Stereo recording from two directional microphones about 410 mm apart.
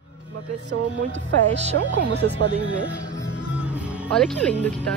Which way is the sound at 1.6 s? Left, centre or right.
Centre.